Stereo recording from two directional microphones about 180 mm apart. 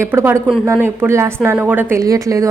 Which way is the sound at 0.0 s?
15° right (ahead or behind).